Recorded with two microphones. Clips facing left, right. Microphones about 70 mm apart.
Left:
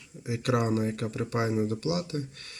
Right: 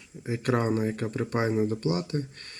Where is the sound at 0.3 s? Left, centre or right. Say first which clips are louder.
Right 1 dB; right.